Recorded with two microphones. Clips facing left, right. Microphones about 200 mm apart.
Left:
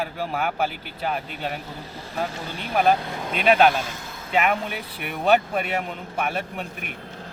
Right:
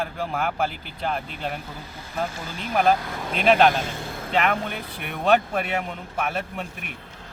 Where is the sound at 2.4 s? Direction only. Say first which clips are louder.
Even; 35° left (ahead or behind).